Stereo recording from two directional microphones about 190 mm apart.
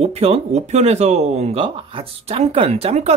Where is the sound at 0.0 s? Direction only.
35° right (ahead or behind).